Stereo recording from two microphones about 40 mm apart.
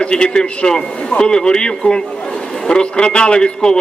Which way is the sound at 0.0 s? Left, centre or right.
Left.